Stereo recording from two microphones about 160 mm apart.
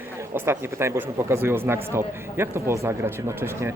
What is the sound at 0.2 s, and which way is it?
Speech, 15° right (ahead or behind).